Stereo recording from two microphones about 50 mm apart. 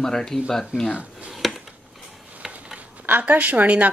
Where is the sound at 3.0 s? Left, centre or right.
Right.